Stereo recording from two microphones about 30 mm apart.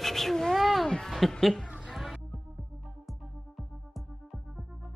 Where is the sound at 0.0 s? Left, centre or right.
Centre.